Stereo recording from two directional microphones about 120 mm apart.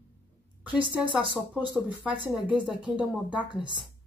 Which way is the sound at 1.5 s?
15° right (ahead or behind).